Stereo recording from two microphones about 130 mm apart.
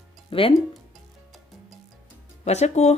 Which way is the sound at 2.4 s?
60° left (ahead or behind).